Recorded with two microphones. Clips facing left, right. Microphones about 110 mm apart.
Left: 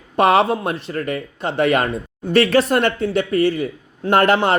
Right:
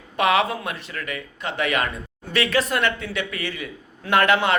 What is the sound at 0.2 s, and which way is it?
Speech, 35° left (ahead or behind).